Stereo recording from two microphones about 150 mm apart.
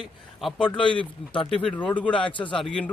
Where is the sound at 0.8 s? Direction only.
35° left (ahead or behind).